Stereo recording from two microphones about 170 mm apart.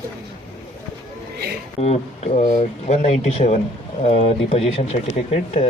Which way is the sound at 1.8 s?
40° left (ahead or behind).